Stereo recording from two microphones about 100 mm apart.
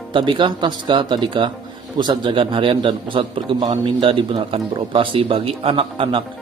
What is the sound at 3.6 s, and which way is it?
Speech, 45° right (ahead or behind).